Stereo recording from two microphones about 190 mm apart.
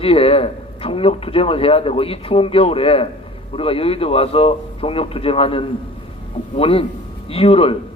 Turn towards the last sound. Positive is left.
turn(degrees=30)  # may be behind; listen again after turning